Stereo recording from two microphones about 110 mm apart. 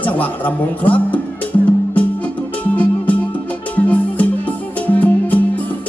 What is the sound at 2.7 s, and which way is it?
Music, 15° left (ahead or behind).